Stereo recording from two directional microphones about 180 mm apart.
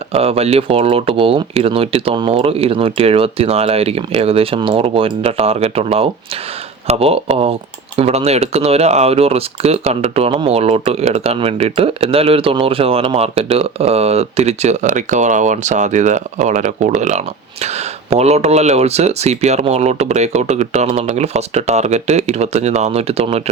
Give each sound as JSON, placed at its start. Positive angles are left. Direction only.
{"t": 0.1, "sound": "speech", "side_deg": -35}